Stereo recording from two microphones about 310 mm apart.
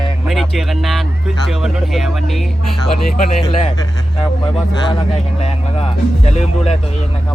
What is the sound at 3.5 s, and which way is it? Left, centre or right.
Speech, centre.